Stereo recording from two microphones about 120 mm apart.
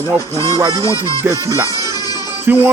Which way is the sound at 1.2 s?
25° right (ahead or behind).